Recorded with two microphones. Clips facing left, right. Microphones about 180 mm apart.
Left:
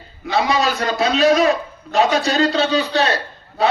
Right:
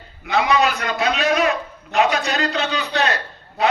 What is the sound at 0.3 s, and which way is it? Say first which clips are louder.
A man's voice: even; 35° left (ahead or behind).